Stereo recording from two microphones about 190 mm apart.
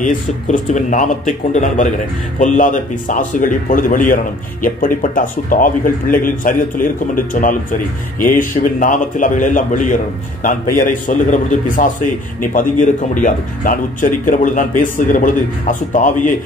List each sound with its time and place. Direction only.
0.0 s a man's voice: 40° left (ahead or behind)